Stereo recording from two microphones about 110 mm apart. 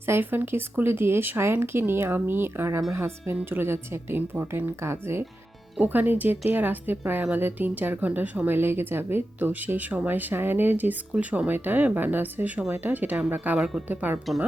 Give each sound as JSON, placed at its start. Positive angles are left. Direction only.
{"t": 0.0, "sound": "a woman's voice", "side_deg": -20}